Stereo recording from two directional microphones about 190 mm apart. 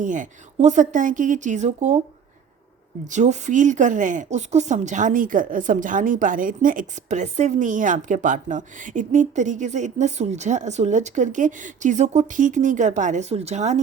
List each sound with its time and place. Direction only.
0.0 s speech: 40° right (ahead or behind)
3.1 s speech: 40° right (ahead or behind)